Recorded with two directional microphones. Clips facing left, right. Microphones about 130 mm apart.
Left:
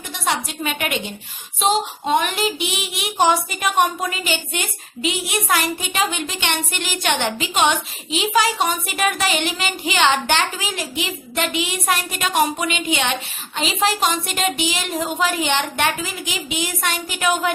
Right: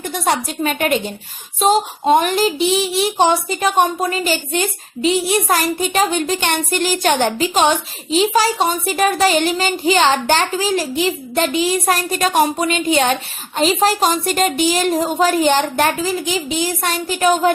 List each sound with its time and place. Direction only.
0.1 s a woman's voice: 40° right (ahead or behind)